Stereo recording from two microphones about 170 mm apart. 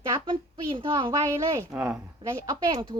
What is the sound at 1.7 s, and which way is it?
Speech, 5° right (ahead or behind).